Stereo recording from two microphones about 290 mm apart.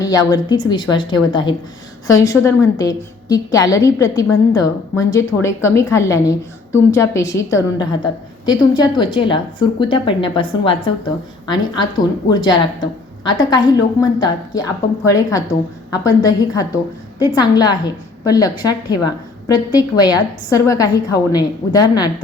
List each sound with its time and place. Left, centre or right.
0.0 s a woman's voice: centre